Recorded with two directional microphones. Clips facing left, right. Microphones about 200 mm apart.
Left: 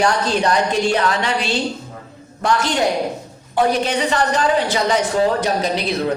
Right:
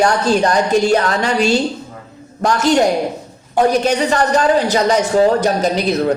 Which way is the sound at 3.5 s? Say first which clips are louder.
Right 4 dB; 45° right (ahead or behind).